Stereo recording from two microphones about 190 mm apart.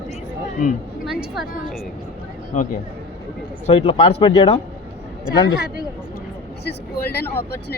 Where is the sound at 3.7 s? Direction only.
30° left (ahead or behind).